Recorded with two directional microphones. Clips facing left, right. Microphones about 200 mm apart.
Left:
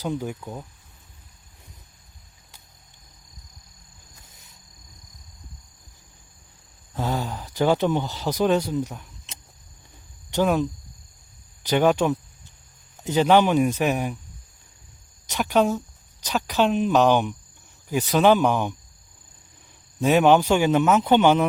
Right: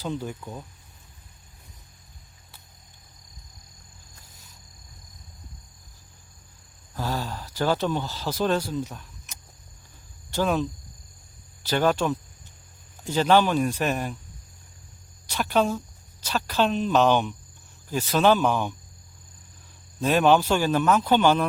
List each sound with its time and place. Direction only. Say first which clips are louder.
0.0 s speech: left 3 dB; 15° left (ahead or behind)
6.9 s speech: left 3 dB; 20° left (ahead or behind)
15.3 s speech: left 3 dB; 15° left (ahead or behind)
20.0 s speech: left 3 dB; 15° left (ahead or behind)